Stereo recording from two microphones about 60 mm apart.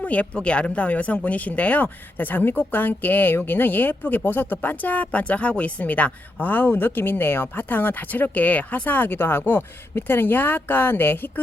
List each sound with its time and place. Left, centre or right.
0.0 s speech: left